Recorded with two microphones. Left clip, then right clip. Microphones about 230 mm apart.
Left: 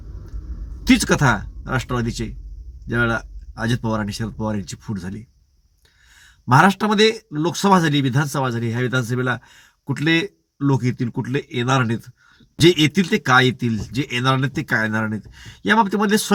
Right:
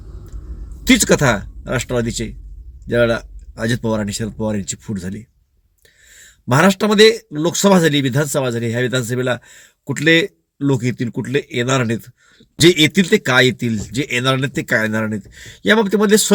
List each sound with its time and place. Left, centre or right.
0.9 s speech: centre